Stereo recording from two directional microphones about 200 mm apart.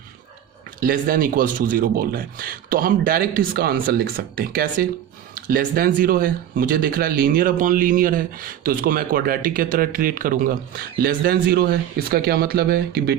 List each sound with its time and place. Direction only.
0.8 s speech: 45° right (ahead or behind)